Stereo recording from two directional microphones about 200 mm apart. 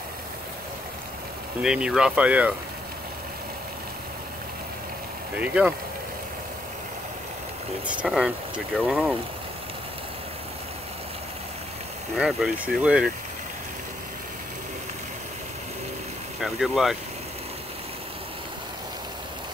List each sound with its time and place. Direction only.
1.6 s speech: 5° right (ahead or behind)
5.4 s speech: 5° right (ahead or behind)
7.8 s speech: 5° right (ahead or behind)
12.2 s speech: 5° right (ahead or behind)
16.3 s speech: centre (ahead or behind)